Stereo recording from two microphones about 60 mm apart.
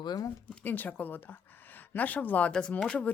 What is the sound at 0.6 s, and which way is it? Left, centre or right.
Speech, left.